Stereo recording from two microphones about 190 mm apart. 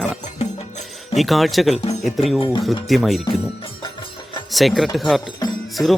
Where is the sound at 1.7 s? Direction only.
35° left (ahead or behind).